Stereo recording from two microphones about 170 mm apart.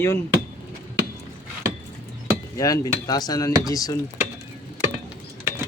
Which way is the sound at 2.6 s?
20° left (ahead or behind).